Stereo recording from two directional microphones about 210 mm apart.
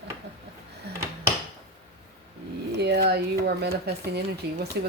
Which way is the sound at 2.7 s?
55° right (ahead or behind).